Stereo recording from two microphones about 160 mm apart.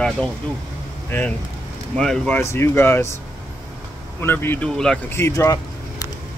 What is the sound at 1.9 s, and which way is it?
Speech, 5° left (ahead or behind).